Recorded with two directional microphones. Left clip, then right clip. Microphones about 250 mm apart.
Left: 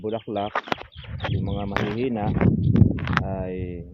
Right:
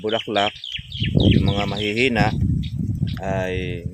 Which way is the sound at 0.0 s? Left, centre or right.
Centre.